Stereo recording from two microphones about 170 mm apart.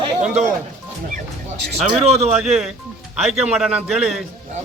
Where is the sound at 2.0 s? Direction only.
40° right (ahead or behind).